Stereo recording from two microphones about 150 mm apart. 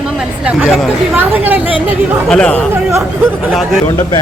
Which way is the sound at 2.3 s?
5° left (ahead or behind).